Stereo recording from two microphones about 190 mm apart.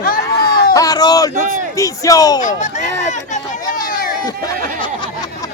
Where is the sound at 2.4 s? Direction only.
40° left (ahead or behind).